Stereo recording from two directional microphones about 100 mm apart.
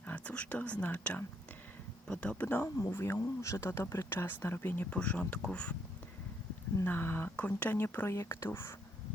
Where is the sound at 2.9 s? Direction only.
25° left (ahead or behind).